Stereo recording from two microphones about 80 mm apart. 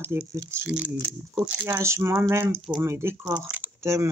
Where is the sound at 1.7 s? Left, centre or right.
Right.